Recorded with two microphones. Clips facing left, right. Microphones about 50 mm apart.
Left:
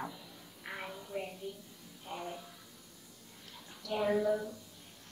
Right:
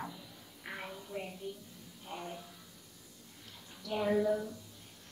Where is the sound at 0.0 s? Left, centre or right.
Centre.